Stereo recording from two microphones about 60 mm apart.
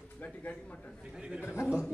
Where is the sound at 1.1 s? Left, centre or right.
Centre.